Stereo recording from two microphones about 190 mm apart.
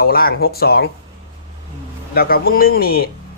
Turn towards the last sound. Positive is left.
turn(degrees=50)  # may be behind; listen again after turning